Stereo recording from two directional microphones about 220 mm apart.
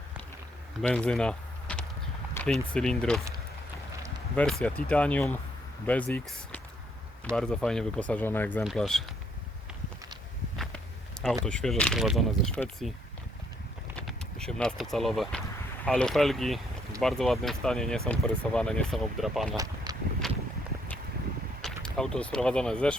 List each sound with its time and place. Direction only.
0.8 s speech: 5° left (ahead or behind)
4.6 s speech: 5° left (ahead or behind)
11.4 s speech: 5° left (ahead or behind)
14.0 s speech: centre (ahead or behind)
19.5 s a sound: 15° right (ahead or behind)
20.2 s a sound: centre (ahead or behind)
21.6 s speech: centre (ahead or behind)